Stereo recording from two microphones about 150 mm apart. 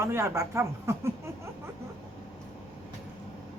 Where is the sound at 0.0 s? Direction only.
15° right (ahead or behind).